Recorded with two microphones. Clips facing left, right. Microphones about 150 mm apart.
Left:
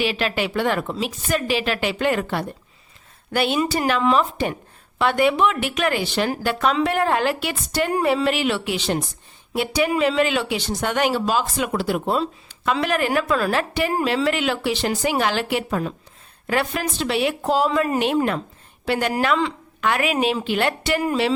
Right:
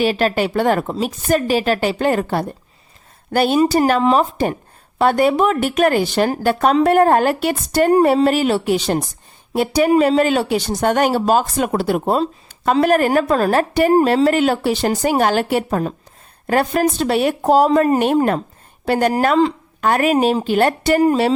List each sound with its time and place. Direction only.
0.0 s a woman's voice: 40° right (ahead or behind)